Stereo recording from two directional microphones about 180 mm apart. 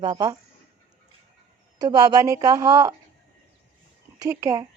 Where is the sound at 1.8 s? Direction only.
20° right (ahead or behind).